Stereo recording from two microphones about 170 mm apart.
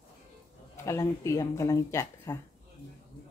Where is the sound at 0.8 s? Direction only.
20° left (ahead or behind).